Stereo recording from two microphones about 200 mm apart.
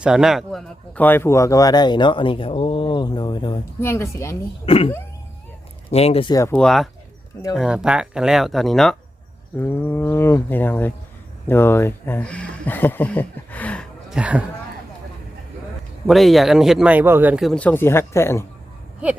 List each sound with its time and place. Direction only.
0.0 s speech: 5° right (ahead or behind); by 4.4 s 15° left (ahead or behind)
4.6 s speech: 30° left (ahead or behind)
5.9 s speech: 30° left (ahead or behind)
6.3 s speech: 10° left (ahead or behind)
14.2 s speech: 5° right (ahead or behind)
16.0 s speech: centre (ahead or behind)